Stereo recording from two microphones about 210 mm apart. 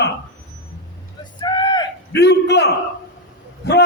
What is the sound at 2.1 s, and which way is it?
Speech, 50° left (ahead or behind).